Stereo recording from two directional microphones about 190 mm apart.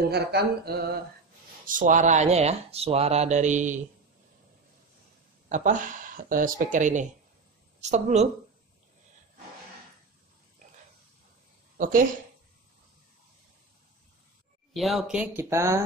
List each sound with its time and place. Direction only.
0.1 s mantra: 60° right (ahead or behind)
1.7 s speech: 45° right (ahead or behind)
5.5 s speech: 40° right (ahead or behind)
11.8 s speech: 45° right (ahead or behind)
14.7 s speech: centre (ahead or behind)